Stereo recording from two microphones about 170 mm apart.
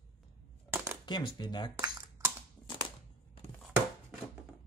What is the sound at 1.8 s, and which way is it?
Computer keyboard, 15° right (ahead or behind).